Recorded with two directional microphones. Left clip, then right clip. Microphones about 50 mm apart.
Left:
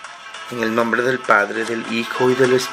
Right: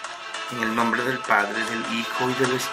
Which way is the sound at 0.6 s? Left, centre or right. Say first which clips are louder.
Left 5 dB; left.